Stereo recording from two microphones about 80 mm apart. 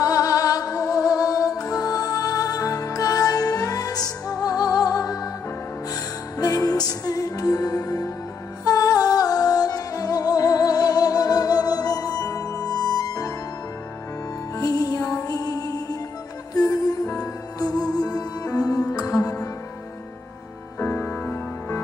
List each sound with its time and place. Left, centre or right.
0.0 s music: left
6.3 s music: left
14.5 s music: left
20.8 s music: left